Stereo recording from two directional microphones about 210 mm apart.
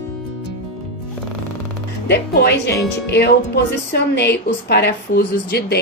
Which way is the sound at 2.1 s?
50° left (ahead or behind).